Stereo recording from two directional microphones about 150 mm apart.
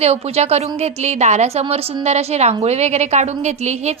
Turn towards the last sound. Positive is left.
turn(degrees=-50)  # may be behind; listen again after turning